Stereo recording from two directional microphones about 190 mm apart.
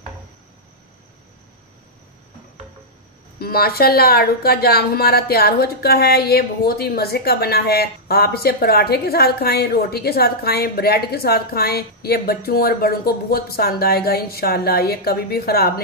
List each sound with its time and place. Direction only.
3.3 s a woman's voice: 55° left (ahead or behind)